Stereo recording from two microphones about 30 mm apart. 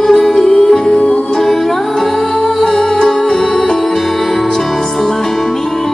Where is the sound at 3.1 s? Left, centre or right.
Centre.